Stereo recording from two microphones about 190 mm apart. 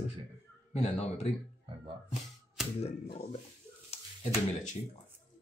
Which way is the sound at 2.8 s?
35° left (ahead or behind).